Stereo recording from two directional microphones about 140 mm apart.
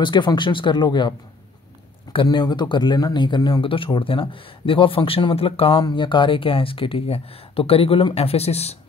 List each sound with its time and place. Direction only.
0.0 s speech: 35° left (ahead or behind)
2.1 s speech: 30° left (ahead or behind); by 8.7 s 50° left (ahead or behind)